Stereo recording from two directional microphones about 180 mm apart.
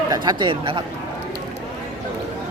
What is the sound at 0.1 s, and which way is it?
Speech, 25° right (ahead or behind).